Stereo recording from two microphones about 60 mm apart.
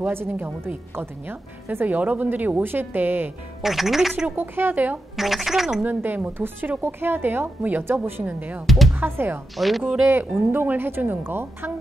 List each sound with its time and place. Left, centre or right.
0.0 s a woman's voice: right
3.6 s speech: centre
4.4 s a woman's voice: right
5.1 s speech: centre
5.8 s a woman's voice: right
8.6 s speech: centre
8.9 s a woman's voice: right
9.6 s speech: centre
10.0 s a woman's voice: right